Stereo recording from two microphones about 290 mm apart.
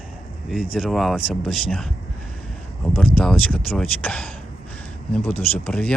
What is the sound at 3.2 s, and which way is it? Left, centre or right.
Speech, centre.